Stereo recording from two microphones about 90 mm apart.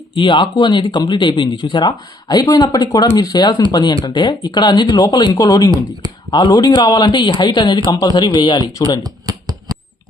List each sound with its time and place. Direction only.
0.1 s speech: 65° left (ahead or behind)
7.9 s speech: 45° left (ahead or behind)